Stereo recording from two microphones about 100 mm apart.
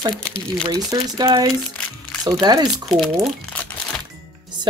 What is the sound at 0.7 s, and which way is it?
Speech, 45° right (ahead or behind).